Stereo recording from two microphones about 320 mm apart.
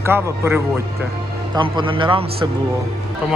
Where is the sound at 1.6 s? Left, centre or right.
Centre.